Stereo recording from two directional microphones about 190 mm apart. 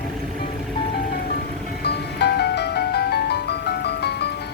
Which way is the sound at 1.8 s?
60° left (ahead or behind).